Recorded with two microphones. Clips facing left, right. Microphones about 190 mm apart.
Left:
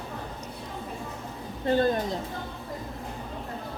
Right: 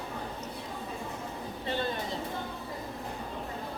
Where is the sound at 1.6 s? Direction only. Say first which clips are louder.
Left 10 dB; 45° left (ahead or behind).